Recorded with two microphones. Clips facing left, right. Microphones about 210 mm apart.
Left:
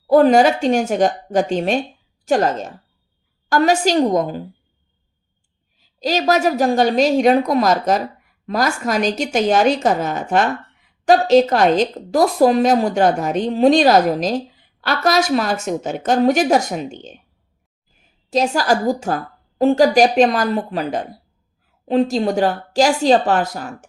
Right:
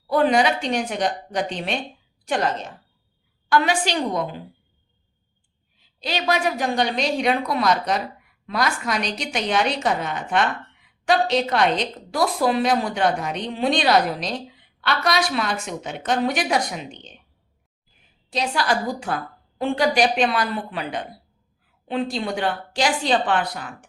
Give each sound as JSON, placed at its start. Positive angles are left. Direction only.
{"t": 0.1, "sound": "a woman's voice", "side_deg": 45}
{"t": 5.8, "sound": "a woman's voice", "side_deg": 40}